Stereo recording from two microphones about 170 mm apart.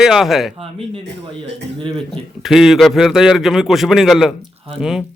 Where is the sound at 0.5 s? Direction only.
35° right (ahead or behind).